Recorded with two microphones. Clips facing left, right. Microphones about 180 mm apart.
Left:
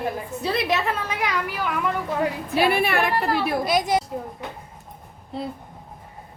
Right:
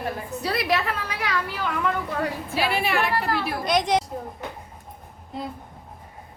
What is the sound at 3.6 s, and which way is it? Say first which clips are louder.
Speech: even; 5° left (ahead or behind).